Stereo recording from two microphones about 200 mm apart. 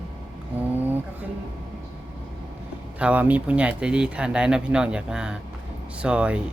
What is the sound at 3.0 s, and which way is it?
Speech, 5° right (ahead or behind).